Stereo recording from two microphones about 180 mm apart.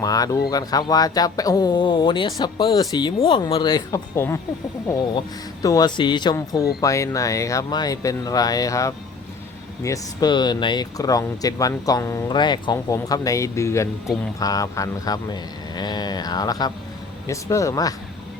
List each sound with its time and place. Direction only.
0.0 s speech: 20° left (ahead or behind)
5.6 s speech: 20° left (ahead or behind)